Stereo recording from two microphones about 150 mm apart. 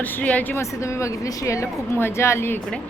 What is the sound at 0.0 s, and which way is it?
A woman's voice, 10° left (ahead or behind).